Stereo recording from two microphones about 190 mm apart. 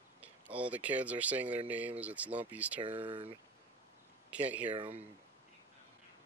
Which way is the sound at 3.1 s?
30° right (ahead or behind).